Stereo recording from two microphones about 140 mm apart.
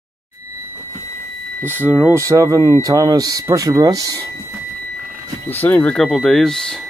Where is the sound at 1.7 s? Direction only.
15° right (ahead or behind).